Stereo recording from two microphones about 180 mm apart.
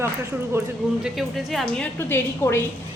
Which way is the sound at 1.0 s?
Centre (ahead or behind).